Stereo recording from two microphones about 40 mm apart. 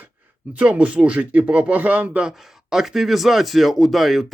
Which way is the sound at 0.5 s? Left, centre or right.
Right.